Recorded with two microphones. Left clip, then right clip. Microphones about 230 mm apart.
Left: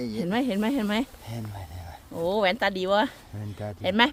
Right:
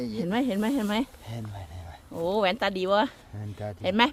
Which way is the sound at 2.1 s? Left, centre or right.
Centre.